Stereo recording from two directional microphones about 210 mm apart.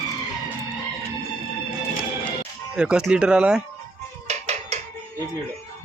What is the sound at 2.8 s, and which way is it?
Speech, 5° right (ahead or behind).